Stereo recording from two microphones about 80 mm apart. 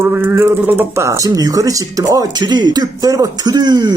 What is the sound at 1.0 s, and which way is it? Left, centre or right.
Speech, right.